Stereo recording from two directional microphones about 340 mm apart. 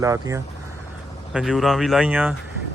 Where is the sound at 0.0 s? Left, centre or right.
Centre.